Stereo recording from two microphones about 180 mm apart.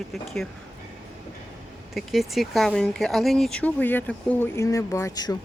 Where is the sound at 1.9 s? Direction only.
Centre (ahead or behind); by 5.3 s 20° left (ahead or behind).